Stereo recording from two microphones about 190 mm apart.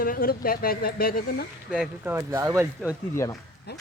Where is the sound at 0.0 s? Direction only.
50° left (ahead or behind).